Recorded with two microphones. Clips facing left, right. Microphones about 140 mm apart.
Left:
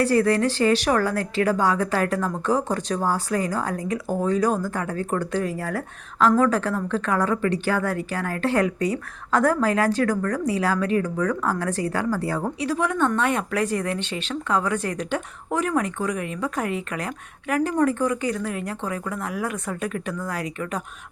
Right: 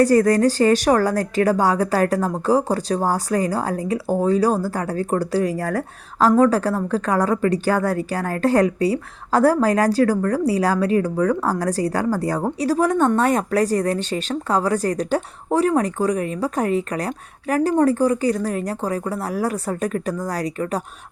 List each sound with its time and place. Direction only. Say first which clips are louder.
0.0 s a woman's voice: right 5 dB; 40° right (ahead or behind)